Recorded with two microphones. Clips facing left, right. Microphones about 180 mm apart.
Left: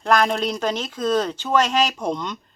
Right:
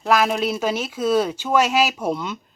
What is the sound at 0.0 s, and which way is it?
Speech, 5° right (ahead or behind).